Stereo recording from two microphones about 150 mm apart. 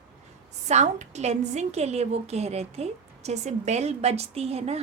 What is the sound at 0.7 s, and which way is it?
A woman's voice, 50° right (ahead or behind).